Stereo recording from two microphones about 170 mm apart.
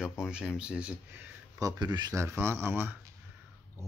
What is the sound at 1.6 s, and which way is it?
Speech, 25° right (ahead or behind).